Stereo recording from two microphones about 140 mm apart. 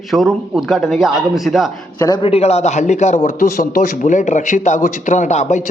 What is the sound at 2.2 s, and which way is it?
Speech, 45° left (ahead or behind).